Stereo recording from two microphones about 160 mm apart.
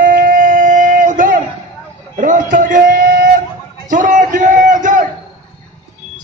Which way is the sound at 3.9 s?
55° right (ahead or behind).